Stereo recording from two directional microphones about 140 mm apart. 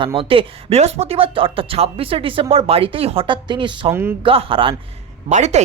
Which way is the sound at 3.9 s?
15° right (ahead or behind).